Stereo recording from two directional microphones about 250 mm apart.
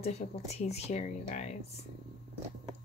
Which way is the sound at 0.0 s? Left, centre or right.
Left.